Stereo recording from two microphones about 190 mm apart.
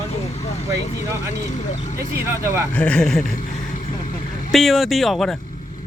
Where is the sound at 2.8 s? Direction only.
5° left (ahead or behind).